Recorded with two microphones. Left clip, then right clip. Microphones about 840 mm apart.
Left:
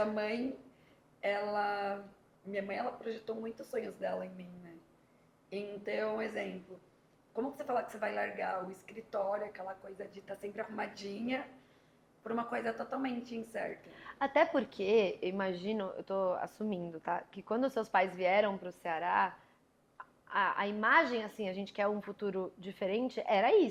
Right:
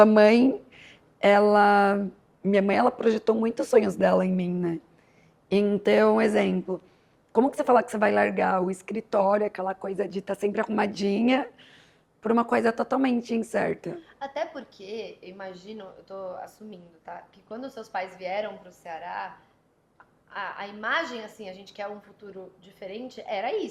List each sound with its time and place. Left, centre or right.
0.0 s a woman's voice: right
5.5 s a woman's voice: right
14.2 s a woman's voice: left
20.3 s a woman's voice: left